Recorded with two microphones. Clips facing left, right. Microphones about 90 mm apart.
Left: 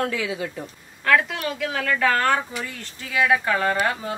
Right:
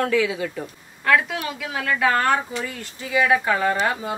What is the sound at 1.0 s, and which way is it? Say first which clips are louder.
Speech: even; 5° right (ahead or behind).